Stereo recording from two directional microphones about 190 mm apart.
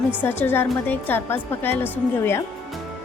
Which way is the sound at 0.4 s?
10° left (ahead or behind).